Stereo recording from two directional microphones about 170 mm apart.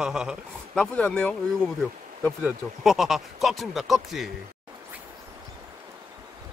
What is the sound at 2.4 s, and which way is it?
Speech, centre (ahead or behind).